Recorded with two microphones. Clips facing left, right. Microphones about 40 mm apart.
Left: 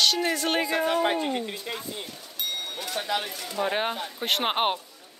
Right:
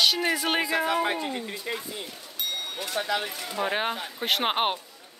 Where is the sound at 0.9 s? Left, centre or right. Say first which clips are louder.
Left 2 dB; centre.